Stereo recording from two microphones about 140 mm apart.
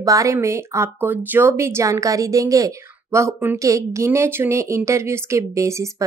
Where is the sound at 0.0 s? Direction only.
25° right (ahead or behind).